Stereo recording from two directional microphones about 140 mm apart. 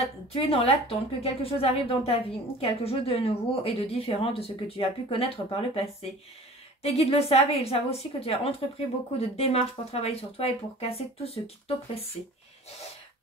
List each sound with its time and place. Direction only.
0.0 s speech: 45° left (ahead or behind)